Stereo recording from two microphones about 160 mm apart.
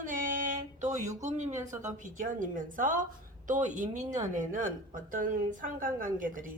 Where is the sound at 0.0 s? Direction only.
55° right (ahead or behind).